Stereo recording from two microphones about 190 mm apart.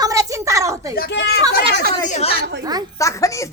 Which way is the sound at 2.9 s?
15° left (ahead or behind).